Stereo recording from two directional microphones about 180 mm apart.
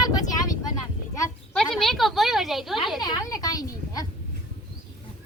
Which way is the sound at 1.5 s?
Centre (ahead or behind).